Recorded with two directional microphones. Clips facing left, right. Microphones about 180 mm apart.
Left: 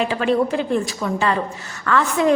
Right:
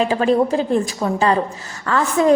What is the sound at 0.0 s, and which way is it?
A woman's voice, 35° right (ahead or behind).